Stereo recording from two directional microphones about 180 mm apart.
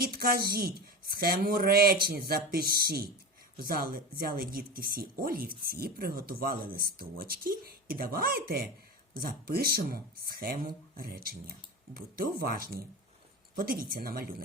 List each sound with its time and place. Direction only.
0.0 s a woman's voice: 55° right (ahead or behind)